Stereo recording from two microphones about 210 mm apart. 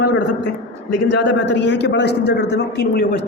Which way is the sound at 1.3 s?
55° left (ahead or behind).